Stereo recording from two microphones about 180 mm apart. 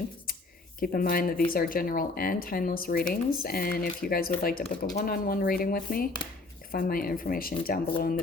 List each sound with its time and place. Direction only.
0.8 s speech: 55° left (ahead or behind)